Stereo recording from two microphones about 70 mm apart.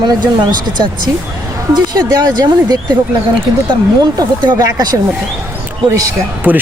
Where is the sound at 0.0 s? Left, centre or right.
Right.